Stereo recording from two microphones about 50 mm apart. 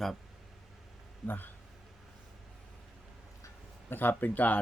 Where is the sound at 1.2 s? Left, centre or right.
Left.